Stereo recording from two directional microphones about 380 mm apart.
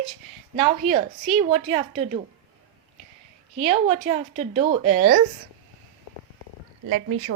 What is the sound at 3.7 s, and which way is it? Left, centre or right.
A woman's voice, centre.